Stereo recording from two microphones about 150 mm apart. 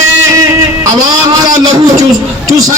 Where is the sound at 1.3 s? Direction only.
25° right (ahead or behind).